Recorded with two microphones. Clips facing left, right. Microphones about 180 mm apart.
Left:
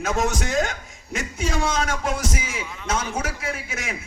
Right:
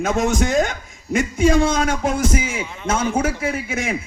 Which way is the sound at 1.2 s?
55° right (ahead or behind).